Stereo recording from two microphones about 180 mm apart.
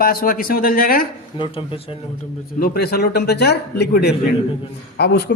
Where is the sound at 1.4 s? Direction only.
30° left (ahead or behind).